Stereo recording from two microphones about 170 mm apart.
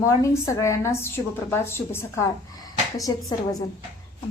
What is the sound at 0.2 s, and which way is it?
A woman's voice, 15° left (ahead or behind).